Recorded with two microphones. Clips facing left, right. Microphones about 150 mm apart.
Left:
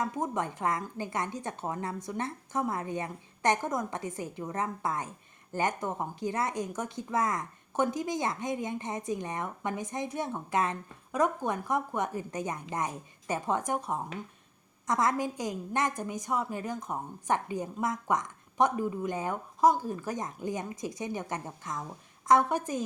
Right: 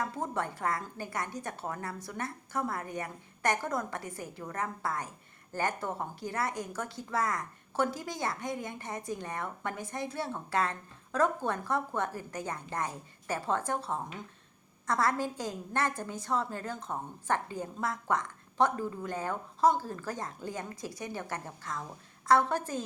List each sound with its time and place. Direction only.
0.0 s a woman's voice: 15° left (ahead or behind)